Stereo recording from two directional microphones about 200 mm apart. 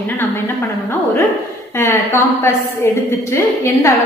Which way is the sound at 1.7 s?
15° left (ahead or behind).